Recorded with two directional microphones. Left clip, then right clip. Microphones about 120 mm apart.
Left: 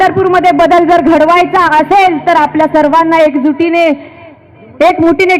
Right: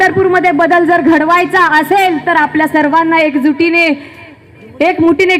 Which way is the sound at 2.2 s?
25° left (ahead or behind).